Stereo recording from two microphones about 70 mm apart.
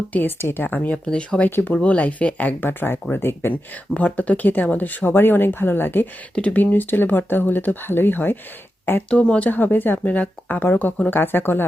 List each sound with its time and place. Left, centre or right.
0.1 s speech: left
1.0 s speech: centre
1.4 s speech: left
3.9 s speech: left
9.0 s speech: centre
9.5 s speech: left